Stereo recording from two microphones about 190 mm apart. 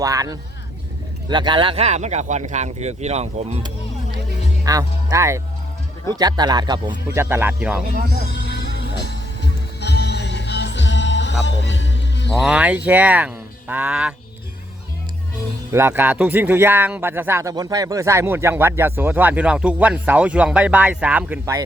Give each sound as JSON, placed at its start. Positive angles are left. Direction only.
{"t": 0.0, "sound": "a man's voice", "side_deg": -20}
{"t": 4.6, "sound": "speech", "side_deg": -20}
{"t": 7.9, "sound": "speech", "side_deg": -55}
{"t": 8.4, "sound": "music", "side_deg": 60}
{"t": 12.4, "sound": "a man's voice", "side_deg": -5}
{"t": 15.7, "sound": "a man's voice", "side_deg": -10}